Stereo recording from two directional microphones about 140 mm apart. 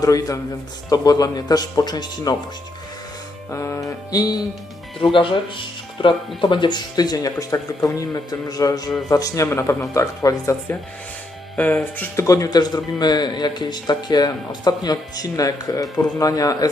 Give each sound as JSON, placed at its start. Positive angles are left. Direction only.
{"t": 0.0, "sound": "speech", "side_deg": 25}
{"t": 3.5, "sound": "speech", "side_deg": 20}
{"t": 5.1, "sound": "speech", "side_deg": 35}
{"t": 11.5, "sound": "speech", "side_deg": 10}
{"t": 12.2, "sound": "speech", "side_deg": 25}